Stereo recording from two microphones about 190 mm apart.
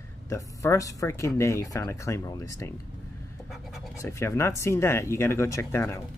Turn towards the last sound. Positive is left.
turn(degrees=15)  # may be behind; listen again after turning